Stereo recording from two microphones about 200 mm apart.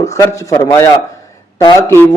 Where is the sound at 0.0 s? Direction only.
15° left (ahead or behind).